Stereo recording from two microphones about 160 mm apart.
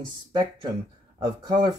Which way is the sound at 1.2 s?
25° right (ahead or behind).